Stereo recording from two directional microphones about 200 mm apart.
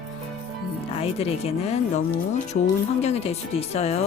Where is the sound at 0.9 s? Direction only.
30° left (ahead or behind).